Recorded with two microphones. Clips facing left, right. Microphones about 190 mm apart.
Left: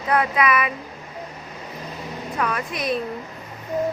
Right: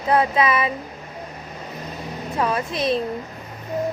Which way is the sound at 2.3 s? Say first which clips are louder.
Right 3 dB; 25° right (ahead or behind).